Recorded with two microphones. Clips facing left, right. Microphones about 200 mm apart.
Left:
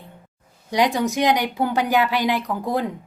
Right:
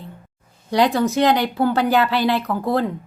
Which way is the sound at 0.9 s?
15° left (ahead or behind).